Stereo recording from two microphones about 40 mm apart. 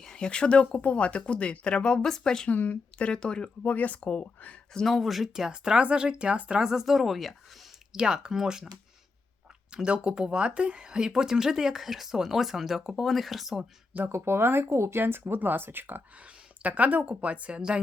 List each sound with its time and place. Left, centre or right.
0.0 s speech: left
2.0 s speech: centre
2.5 s speech: left
3.0 s speech: left
3.6 s speech: left
4.7 s speech: centre
4.9 s speech: centre
5.5 s speech: right
6.6 s speech: centre
7.9 s speech: centre
9.7 s speech: right; by 13.7 s centre
14.0 s speech: right
15.3 s speech: right
16.6 s speech: right